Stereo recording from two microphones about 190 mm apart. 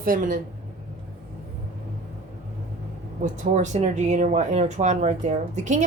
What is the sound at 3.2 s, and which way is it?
Speech, 40° right (ahead or behind).